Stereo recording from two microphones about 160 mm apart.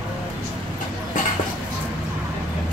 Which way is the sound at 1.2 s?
55° left (ahead or behind).